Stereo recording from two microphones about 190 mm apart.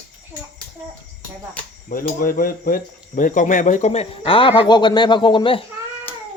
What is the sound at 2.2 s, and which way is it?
Speech, 50° left (ahead or behind).